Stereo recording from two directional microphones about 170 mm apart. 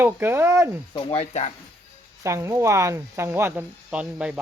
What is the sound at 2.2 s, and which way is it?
Speech, 15° right (ahead or behind).